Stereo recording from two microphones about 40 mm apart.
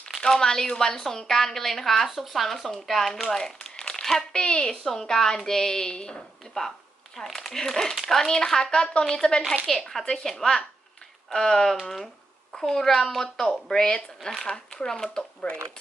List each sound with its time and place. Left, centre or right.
0.2 s a woman's voice: centre
3.6 s crumpling: left
4.0 s a child's voice: centre
4.4 s a woman's voice: left
4.7 s a woman's voice: centre
7.3 s a woman's voice: centre
14.4 s a woman's voice: centre
15.4 s a woman's voice: left